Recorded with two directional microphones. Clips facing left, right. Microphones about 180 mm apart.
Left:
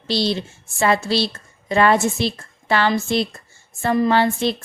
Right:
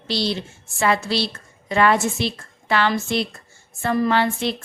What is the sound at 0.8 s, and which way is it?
Speech, 30° left (ahead or behind).